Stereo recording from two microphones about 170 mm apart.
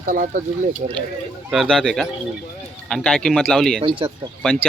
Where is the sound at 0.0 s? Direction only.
55° right (ahead or behind).